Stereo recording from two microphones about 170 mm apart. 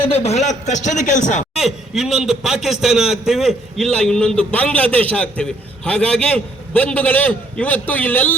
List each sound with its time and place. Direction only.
0.0 s a man's voice: 35° left (ahead or behind)
1.5 s a man's voice: centre (ahead or behind)